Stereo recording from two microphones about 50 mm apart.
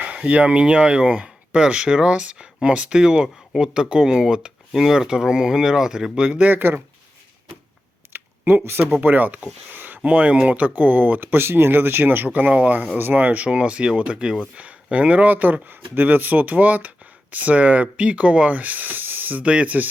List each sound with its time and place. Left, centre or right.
0.0 s speech: right
6.2 s speech: right
6.5 s speech: right
8.1 s a sound: right
9.0 s speech: right
9.7 s a sound: right
10.0 s speech: right
13.0 s speech: right
13.4 s speech: right
19.4 s speech: right